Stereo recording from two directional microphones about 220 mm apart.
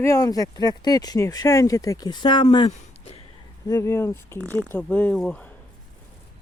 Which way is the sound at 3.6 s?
15° left (ahead or behind).